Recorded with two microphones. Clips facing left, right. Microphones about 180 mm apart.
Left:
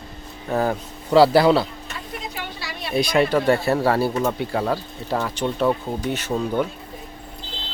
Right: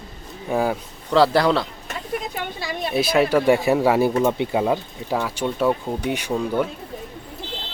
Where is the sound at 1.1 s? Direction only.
5° left (ahead or behind).